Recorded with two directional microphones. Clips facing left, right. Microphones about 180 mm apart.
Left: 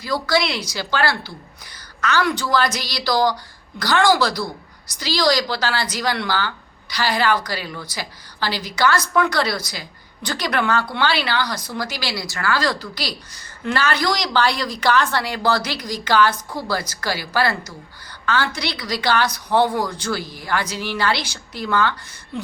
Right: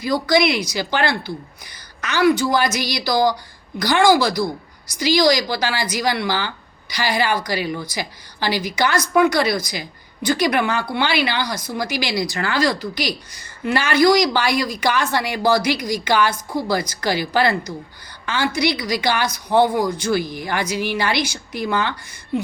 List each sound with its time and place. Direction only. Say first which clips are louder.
0.0 s speech: right 4 dB; 15° right (ahead or behind)